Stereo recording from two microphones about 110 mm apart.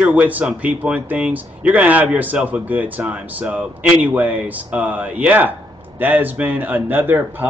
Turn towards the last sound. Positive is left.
turn(degrees=-20)  # may be behind; listen again after turning